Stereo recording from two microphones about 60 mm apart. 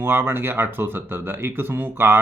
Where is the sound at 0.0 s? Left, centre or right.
Right.